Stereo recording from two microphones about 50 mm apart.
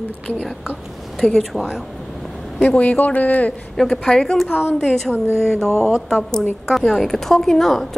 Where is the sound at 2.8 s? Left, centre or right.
Left.